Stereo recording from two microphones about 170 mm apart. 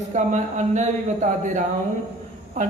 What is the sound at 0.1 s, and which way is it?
A man's voice, 45° right (ahead or behind).